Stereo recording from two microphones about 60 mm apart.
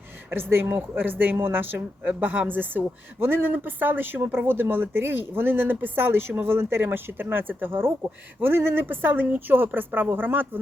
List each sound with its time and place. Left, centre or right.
0.3 s a woman's voice: right